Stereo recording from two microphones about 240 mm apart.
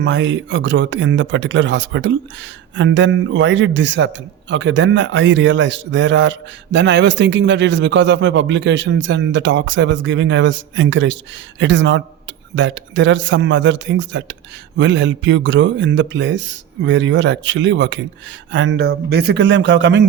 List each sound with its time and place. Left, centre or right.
0.0 s speech: right